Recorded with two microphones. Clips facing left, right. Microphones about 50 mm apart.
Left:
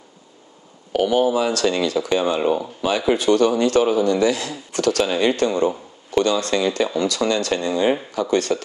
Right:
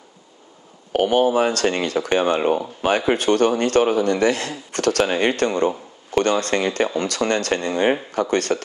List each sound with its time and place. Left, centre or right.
0.9 s speech: right